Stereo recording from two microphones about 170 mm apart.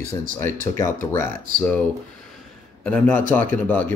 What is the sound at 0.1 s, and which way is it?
Speech, 15° left (ahead or behind).